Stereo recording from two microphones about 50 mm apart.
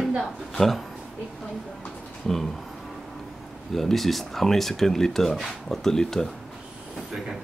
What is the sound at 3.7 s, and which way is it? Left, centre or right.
Speech, centre.